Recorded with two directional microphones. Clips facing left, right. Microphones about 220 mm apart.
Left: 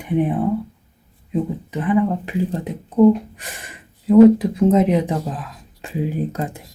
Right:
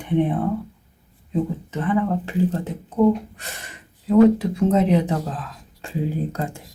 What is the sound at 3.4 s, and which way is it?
Gasp, 15° left (ahead or behind).